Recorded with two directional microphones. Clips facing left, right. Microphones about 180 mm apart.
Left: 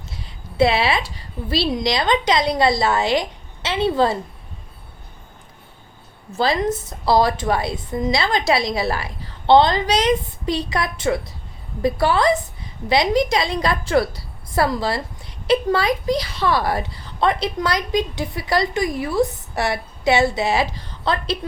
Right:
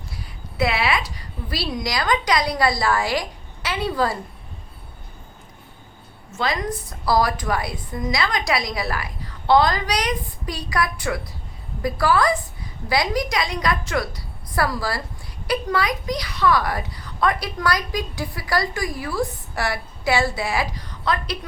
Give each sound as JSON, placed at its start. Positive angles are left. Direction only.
{"t": 0.1, "sound": "a woman's voice", "side_deg": 25}
{"t": 6.3, "sound": "speech", "side_deg": 30}